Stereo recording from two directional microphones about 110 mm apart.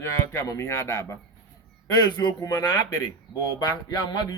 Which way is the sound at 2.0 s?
40° left (ahead or behind).